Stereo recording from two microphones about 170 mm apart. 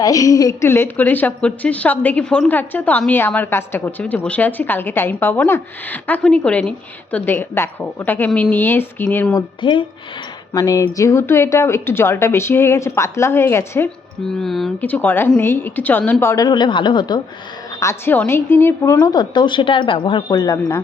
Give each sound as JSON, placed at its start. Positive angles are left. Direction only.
{"t": 0.0, "sound": "a woman's voice", "side_deg": 20}
{"t": 9.3, "sound": "a woman's voice", "side_deg": 30}
{"t": 14.3, "sound": "a woman's voice", "side_deg": 0}
{"t": 16.2, "sound": "a woman's voice", "side_deg": 20}
{"t": 17.7, "sound": "a woman's voice", "side_deg": 15}
{"t": 20.3, "sound": "a woman's voice", "side_deg": 20}